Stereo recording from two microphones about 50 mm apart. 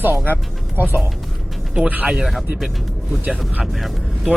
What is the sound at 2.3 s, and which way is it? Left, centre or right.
Speech, centre.